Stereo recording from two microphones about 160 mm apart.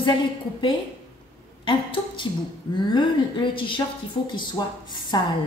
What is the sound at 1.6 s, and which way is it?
Speech, 30° left (ahead or behind).